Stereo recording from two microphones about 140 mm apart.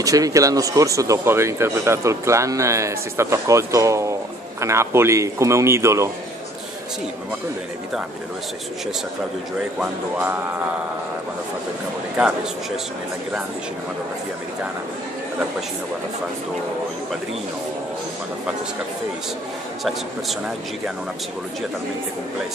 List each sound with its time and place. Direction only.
0.0 s speech: 25° right (ahead or behind)
10.1 s music: 15° right (ahead or behind)
19.8 s speech: centre (ahead or behind)